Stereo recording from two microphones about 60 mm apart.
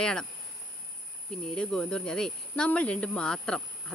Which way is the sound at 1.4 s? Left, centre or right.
Centre.